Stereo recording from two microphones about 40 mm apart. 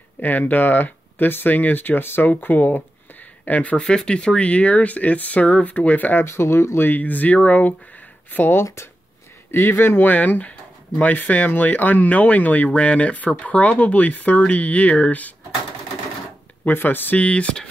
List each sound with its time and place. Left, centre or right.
0.4 s speech: left
3.7 s speech: left
6.3 s speech: left
6.9 s speech: left
8.3 s speech: left
9.5 s speech: left
10.0 s speech: left
16.6 s speech: left
17.2 s speech: left